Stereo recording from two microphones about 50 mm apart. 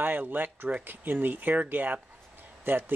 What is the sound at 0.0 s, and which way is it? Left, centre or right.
Speech, right.